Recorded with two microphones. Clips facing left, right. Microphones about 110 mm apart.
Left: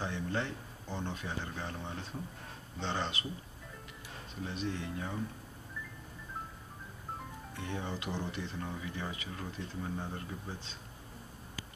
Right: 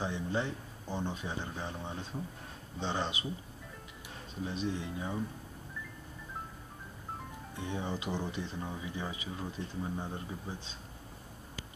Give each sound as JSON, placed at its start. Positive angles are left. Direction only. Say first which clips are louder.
{"t": 0.0, "sound": "speech", "louder": "right 2 dB", "side_deg": -15}
{"t": 4.5, "sound": "speech", "louder": "right 2 dB", "side_deg": -15}
{"t": 7.5, "sound": "speech", "louder": "right 2 dB", "side_deg": -15}